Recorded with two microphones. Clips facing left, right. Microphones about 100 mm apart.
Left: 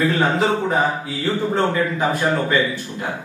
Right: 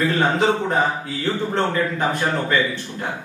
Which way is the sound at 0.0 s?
Centre (ahead or behind).